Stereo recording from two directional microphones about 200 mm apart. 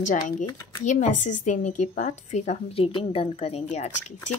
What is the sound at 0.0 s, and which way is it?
A woman's voice, 40° left (ahead or behind).